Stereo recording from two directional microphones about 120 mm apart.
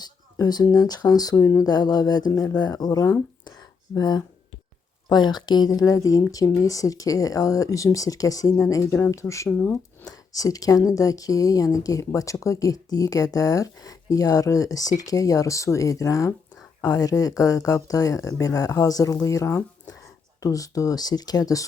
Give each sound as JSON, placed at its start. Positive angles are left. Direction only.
{"t": 0.0, "sound": "speech", "side_deg": 35}